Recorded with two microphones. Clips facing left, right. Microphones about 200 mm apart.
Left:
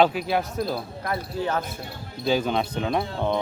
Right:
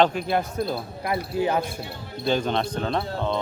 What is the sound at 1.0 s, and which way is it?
Speech, 10° right (ahead or behind).